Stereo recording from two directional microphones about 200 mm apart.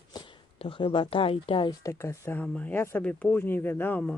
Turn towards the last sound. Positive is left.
turn(degrees=5)  # may be behind; listen again after turning